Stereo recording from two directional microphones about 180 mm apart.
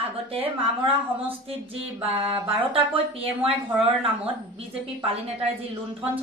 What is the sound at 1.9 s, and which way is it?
A woman's voice, 30° right (ahead or behind).